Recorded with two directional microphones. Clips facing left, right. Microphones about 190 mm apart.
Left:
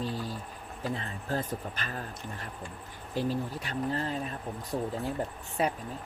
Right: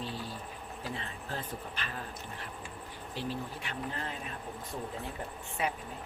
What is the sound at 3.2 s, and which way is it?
Speech, 40° left (ahead or behind).